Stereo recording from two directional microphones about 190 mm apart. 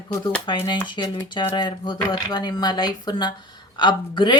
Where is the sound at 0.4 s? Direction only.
25° left (ahead or behind).